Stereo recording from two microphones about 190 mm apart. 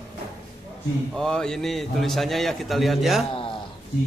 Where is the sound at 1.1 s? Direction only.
5° left (ahead or behind).